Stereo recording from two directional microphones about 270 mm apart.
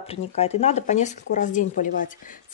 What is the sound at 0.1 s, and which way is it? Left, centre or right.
A woman's voice, left.